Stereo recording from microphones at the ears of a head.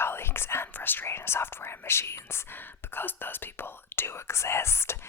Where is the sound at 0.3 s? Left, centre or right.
Left.